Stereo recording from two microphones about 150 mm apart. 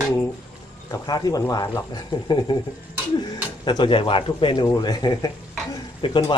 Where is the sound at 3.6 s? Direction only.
30° left (ahead or behind).